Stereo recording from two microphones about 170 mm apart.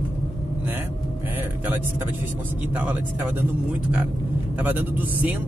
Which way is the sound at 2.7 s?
10° right (ahead or behind).